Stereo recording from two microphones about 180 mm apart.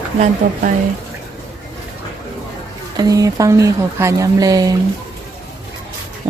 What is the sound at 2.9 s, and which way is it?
Speech, 20° right (ahead or behind).